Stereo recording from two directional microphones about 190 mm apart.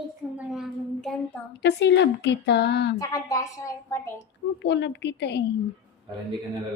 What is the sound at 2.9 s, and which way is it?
A woman's voice, 20° left (ahead or behind).